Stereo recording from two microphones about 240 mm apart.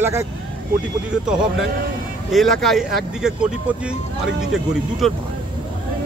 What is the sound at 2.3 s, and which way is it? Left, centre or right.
Speech, centre.